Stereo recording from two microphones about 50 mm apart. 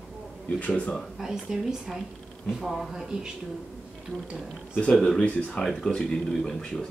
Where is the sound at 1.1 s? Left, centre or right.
Centre.